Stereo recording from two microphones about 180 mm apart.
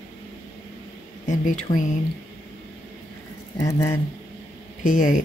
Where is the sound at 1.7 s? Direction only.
45° left (ahead or behind).